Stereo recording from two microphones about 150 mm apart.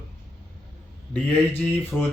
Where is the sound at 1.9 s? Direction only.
5° left (ahead or behind).